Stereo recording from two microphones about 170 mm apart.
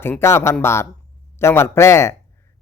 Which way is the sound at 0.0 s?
15° left (ahead or behind).